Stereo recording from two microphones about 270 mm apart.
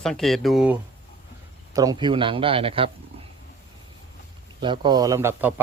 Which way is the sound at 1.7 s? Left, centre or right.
Centre.